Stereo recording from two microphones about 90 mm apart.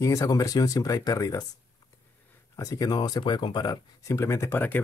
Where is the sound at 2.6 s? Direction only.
45° left (ahead or behind).